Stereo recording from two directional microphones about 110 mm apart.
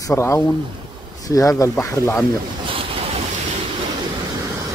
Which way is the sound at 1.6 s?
25° left (ahead or behind).